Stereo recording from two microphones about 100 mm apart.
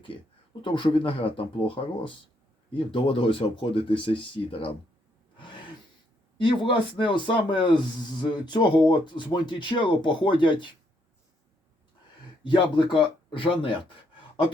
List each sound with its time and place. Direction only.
0.1 s speech: 65° left (ahead or behind)
0.6 s speech: 55° left (ahead or behind)
6.3 s speech: 55° left (ahead or behind)
12.4 s speech: 55° left (ahead or behind)